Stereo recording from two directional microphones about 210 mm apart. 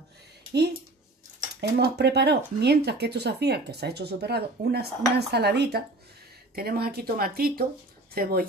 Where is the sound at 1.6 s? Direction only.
50° right (ahead or behind).